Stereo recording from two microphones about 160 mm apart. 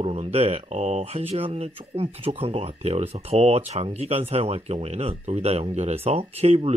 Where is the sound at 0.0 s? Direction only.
40° right (ahead or behind).